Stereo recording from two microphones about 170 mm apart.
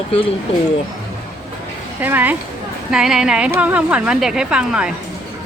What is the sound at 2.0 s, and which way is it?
Speech, 10° right (ahead or behind).